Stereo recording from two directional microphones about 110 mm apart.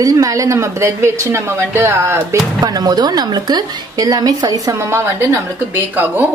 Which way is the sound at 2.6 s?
35° right (ahead or behind).